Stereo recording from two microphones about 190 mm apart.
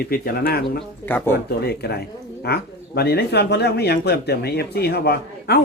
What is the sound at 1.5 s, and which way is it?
Speech, 55° left (ahead or behind).